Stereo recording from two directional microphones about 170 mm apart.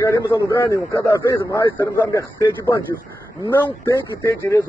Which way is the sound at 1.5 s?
15° left (ahead or behind).